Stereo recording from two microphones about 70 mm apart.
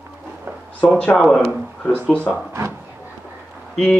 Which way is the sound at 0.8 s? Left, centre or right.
Centre.